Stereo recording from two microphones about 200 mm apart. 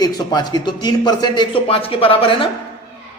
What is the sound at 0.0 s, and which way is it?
A man's voice, 20° left (ahead or behind).